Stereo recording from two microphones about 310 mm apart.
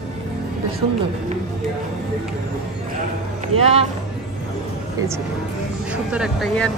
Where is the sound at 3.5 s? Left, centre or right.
Centre.